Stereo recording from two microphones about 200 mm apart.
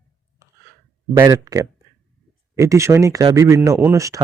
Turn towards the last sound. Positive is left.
turn(degrees=-15)  # may be behind; listen again after turning